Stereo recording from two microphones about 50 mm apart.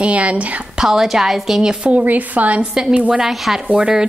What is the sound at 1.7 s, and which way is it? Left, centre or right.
A woman's voice, right.